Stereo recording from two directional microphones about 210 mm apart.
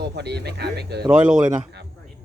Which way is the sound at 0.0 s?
50° right (ahead or behind).